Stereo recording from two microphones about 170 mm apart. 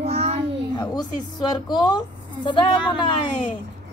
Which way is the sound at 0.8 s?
25° left (ahead or behind).